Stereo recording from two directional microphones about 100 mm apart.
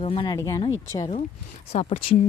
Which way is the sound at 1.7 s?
80° left.